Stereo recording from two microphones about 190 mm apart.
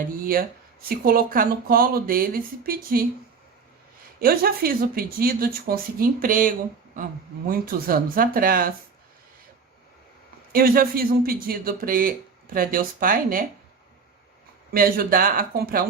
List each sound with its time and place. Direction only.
0.9 s a woman's voice: 50° right (ahead or behind)
4.2 s a woman's voice: 50° right (ahead or behind)
10.5 s a woman's voice: 50° right (ahead or behind)
14.7 s a woman's voice: 50° right (ahead or behind)